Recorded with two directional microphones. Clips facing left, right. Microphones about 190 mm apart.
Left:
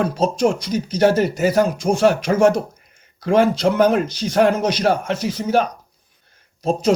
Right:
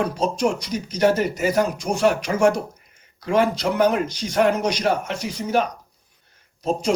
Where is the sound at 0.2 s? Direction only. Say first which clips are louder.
Left 4 dB; 30° left (ahead or behind).